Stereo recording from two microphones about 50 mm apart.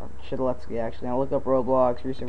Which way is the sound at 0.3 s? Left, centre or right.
Centre.